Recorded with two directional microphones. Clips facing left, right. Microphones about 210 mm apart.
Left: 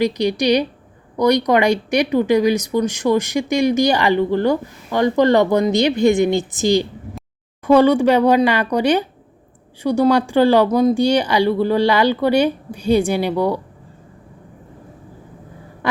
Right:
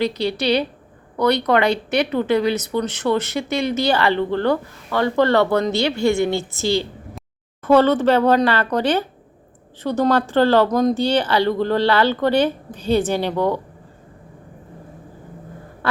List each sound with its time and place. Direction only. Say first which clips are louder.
0.0 s speech: left 3 dB; 15° left (ahead or behind)